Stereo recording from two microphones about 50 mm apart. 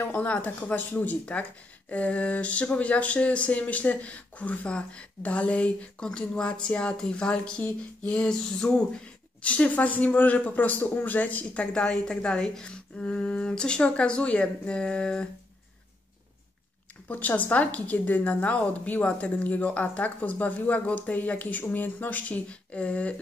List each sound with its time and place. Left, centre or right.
0.1 s speech: left
6.0 s a sound: centre
9.4 s speech: left
17.1 s speech: left